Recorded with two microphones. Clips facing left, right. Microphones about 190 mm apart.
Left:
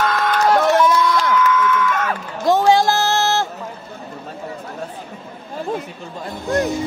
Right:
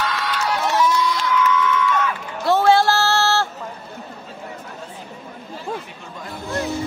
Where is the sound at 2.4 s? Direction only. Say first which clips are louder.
Left 1 dB; 15° left (ahead or behind).